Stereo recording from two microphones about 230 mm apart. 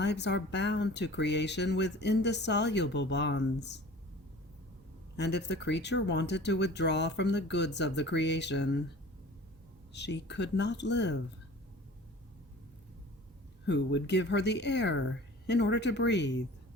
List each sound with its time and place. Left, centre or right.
0.0 s speech: left
5.1 s speech: left
9.9 s speech: left
13.7 s speech: left